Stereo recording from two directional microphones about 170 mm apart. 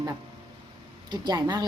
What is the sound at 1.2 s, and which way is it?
Speech, 25° right (ahead or behind).